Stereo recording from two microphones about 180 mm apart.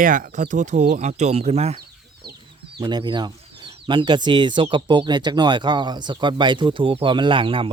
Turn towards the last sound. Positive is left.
turn(degrees=-30)  # may be behind; listen again after turning